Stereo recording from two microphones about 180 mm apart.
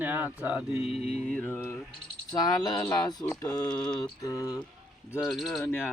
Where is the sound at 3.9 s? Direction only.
20° left (ahead or behind).